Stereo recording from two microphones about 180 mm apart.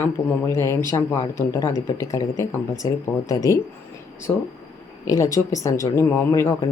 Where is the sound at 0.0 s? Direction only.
15° left (ahead or behind).